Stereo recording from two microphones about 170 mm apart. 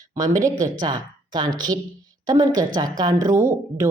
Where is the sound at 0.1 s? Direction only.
20° right (ahead or behind).